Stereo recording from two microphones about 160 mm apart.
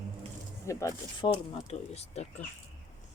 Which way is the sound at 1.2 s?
40° left (ahead or behind).